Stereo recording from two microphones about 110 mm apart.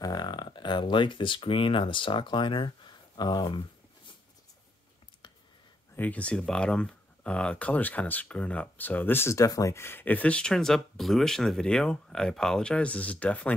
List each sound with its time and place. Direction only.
0.0 s speech: 40° left (ahead or behind)
5.2 s a sound: 45° left (ahead or behind)
5.9 s speech: 15° left (ahead or behind)